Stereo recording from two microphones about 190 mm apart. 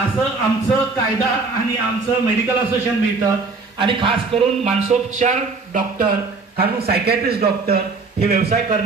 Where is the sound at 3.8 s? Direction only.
25° right (ahead or behind); by 6.0 s 45° right (ahead or behind).